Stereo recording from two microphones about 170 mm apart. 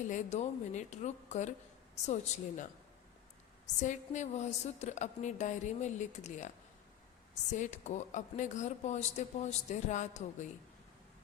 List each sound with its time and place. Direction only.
0.1 s speech: 45° left (ahead or behind)
3.8 s speech: 45° left (ahead or behind)
7.5 s speech: 45° left (ahead or behind)